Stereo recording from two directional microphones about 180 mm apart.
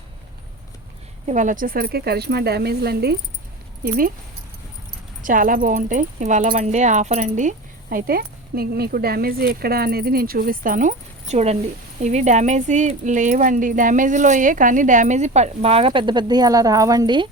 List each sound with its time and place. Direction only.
1.3 s speech: 45° right (ahead or behind); by 3.2 s 60° right (ahead or behind)
3.8 s speech: 50° right (ahead or behind)
5.2 s speech: 50° right (ahead or behind); by 17.2 s 25° right (ahead or behind)